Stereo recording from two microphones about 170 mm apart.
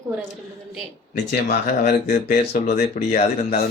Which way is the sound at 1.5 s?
75° left (ahead or behind).